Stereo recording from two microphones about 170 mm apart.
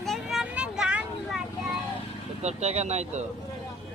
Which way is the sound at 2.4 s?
40° right (ahead or behind).